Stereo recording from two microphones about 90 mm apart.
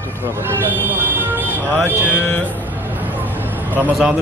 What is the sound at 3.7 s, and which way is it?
Speech, 20° right (ahead or behind).